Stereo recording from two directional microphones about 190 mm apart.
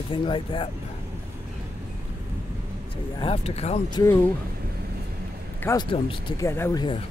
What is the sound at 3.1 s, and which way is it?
Speech, 30° left (ahead or behind).